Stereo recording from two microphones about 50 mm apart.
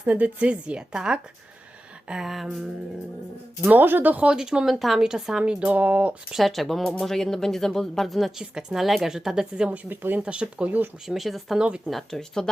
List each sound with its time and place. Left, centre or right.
0.0 s a woman's voice: right; by 2.5 s centre
3.7 s speech: right
4.3 s a woman's voice: centre
4.7 s speech: centre
5.0 s a woman's voice: centre
6.3 s a woman's voice: centre
9.6 s a woman's voice: right
11.0 s speech: centre